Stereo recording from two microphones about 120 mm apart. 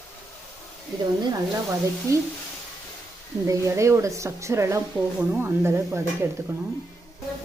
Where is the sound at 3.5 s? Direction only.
25° right (ahead or behind).